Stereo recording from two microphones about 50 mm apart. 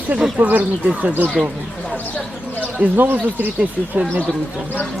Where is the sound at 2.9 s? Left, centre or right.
Right.